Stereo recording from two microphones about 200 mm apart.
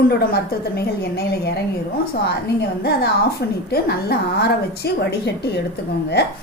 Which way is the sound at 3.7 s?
50° left (ahead or behind).